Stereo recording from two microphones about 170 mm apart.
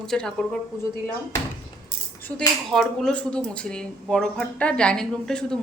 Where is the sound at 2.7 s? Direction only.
5° left (ahead or behind).